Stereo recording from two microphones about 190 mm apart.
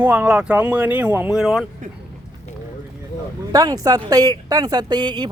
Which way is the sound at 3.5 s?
20° right (ahead or behind).